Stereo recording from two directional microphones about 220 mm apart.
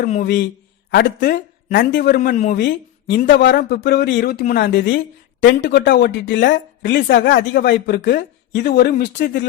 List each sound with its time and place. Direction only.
0.0 s speech: 35° left (ahead or behind)
0.3 s a man's voice: 55° left (ahead or behind)
1.2 s speech: 40° left (ahead or behind)
2.6 s a woman's voice: 50° left (ahead or behind)